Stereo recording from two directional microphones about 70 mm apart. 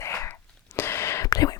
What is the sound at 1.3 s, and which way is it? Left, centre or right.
Whispering, left.